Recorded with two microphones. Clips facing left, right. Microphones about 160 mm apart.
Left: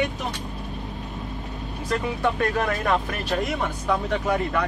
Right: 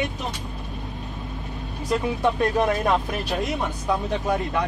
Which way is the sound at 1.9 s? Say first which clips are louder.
Right 2 dB; 15° right (ahead or behind).